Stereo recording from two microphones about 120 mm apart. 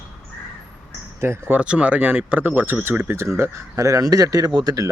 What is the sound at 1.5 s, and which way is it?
Speech, 10° right (ahead or behind).